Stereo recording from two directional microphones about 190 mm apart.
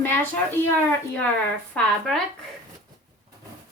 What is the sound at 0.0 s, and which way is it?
Speech, 10° left (ahead or behind).